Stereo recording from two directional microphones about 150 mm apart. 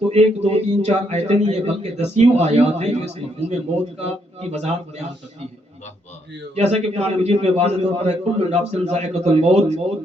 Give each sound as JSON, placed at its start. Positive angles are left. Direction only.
{"t": 0.1, "sound": "a man's voice", "side_deg": -45}
{"t": 6.6, "sound": "a man's voice", "side_deg": -45}